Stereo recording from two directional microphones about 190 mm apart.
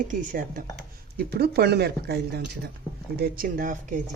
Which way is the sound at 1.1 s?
60° right (ahead or behind).